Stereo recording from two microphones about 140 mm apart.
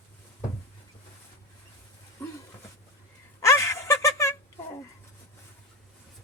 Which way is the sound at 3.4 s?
20° left (ahead or behind).